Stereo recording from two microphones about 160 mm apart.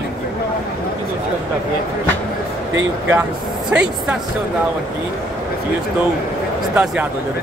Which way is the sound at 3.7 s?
5° right (ahead or behind).